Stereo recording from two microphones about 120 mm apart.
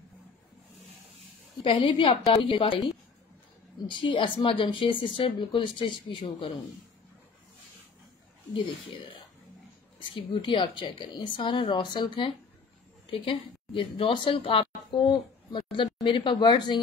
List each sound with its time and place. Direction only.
1.6 s a woman's voice: 50° left (ahead or behind)
3.8 s a woman's voice: 45° left (ahead or behind)
8.5 s a woman's voice: 45° left (ahead or behind)